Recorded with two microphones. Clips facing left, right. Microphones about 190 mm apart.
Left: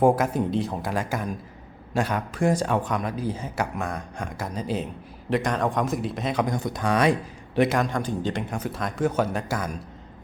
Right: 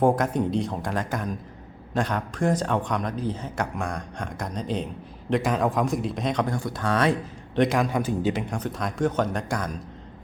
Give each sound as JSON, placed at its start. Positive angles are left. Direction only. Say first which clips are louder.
{"t": 0.0, "sound": "a man's voice", "louder": "left 1 dB", "side_deg": 5}
{"t": 6.4, "sound": "speech", "louder": "left 1 dB", "side_deg": 20}
{"t": 7.9, "sound": "a man's voice", "louder": "right 2 dB", "side_deg": -10}